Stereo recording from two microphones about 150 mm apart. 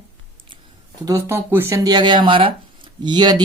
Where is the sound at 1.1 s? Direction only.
15° right (ahead or behind).